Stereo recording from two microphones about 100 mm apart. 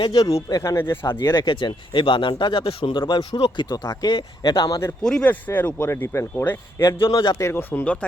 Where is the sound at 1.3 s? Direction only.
55° left (ahead or behind); by 2.9 s 70° left (ahead or behind).